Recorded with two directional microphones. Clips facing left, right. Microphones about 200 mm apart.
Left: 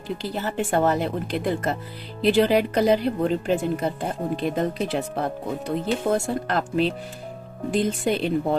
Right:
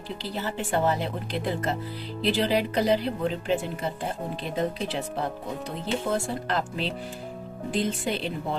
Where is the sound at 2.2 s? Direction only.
50° left (ahead or behind).